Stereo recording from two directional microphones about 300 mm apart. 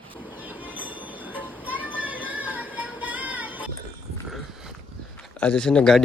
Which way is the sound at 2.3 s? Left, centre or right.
Centre.